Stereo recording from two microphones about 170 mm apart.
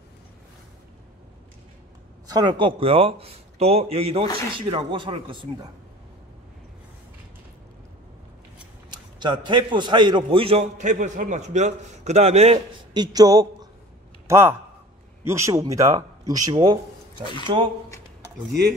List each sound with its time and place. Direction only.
2.2 s a man's voice: 25° right (ahead or behind)
9.2 s a man's voice: 25° right (ahead or behind)
12.9 s a man's voice: 25° right (ahead or behind)